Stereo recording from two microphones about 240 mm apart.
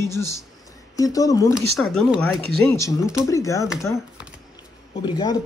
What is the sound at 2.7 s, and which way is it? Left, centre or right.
Speech, centre.